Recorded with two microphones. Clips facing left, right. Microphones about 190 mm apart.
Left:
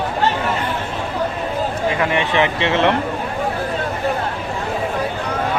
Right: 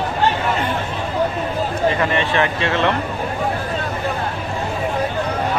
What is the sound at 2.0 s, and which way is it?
Speech, 15° left (ahead or behind).